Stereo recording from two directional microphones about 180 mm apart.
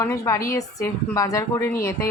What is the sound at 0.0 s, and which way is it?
A woman's voice, 15° left (ahead or behind).